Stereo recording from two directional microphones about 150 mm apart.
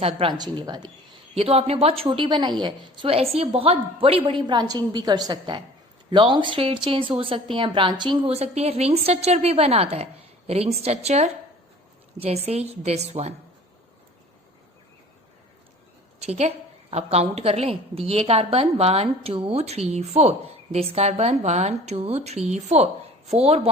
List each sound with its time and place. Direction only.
0.2 s speech: 30° right (ahead or behind)
1.4 s a woman's voice: 40° right (ahead or behind)
16.2 s a woman's voice: 45° right (ahead or behind)